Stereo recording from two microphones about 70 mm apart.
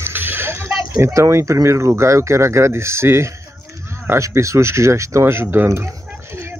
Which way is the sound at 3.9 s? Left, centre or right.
Right.